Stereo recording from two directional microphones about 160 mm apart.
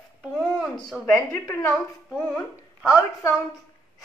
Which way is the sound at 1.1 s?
20° left (ahead or behind).